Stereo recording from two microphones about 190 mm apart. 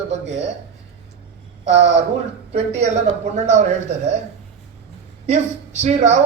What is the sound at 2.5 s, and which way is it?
Speech, 35° right (ahead or behind).